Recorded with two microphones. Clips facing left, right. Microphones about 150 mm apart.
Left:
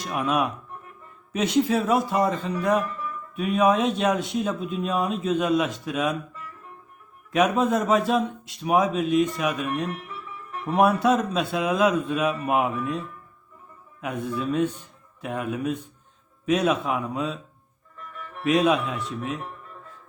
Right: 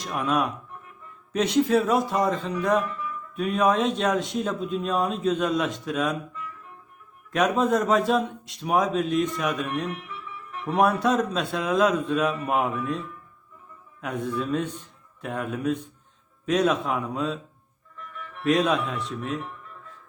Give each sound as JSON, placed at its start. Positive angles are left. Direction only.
{"t": 0.0, "sound": "speech", "side_deg": 5}
{"t": 2.8, "sound": "music", "side_deg": 40}
{"t": 3.3, "sound": "speech", "side_deg": 5}
{"t": 6.3, "sound": "music", "side_deg": 40}
{"t": 7.3, "sound": "speech", "side_deg": 5}
{"t": 9.9, "sound": "music", "side_deg": 40}
{"t": 10.8, "sound": "a man's voice", "side_deg": 5}
{"t": 14.0, "sound": "a man's voice", "side_deg": 5}
{"t": 17.9, "sound": "music", "side_deg": 40}
{"t": 18.4, "sound": "a man's voice", "side_deg": 5}